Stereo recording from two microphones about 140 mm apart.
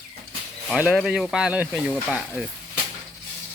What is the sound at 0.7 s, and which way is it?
Speech, 5° right (ahead or behind).